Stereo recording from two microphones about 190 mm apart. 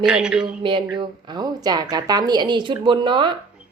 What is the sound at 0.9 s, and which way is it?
A woman's voice, 25° right (ahead or behind).